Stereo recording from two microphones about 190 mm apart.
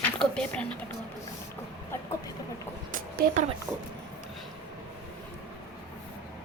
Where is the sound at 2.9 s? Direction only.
45° right (ahead or behind).